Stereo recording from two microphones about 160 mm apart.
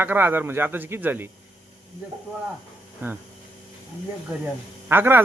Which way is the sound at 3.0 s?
10° right (ahead or behind).